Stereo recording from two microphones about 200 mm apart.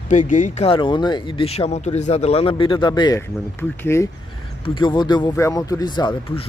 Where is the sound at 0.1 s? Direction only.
40° left (ahead or behind).